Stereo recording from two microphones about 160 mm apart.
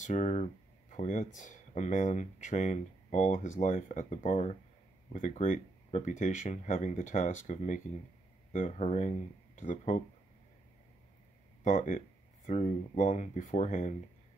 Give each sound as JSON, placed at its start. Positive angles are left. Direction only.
{"t": 0.0, "sound": "speech", "side_deg": 45}
{"t": 11.6, "sound": "speech", "side_deg": 50}